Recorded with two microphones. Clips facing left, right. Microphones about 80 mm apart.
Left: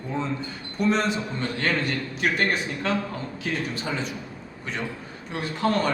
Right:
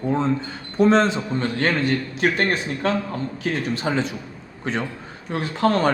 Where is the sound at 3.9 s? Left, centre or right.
Right.